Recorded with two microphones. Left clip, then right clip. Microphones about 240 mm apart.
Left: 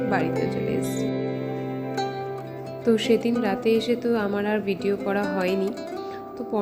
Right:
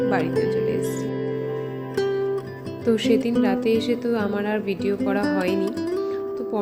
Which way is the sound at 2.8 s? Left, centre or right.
Centre.